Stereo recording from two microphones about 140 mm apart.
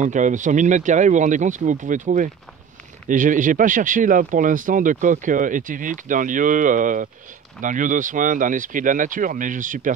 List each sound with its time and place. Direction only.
0.0 s speech: 65° right (ahead or behind)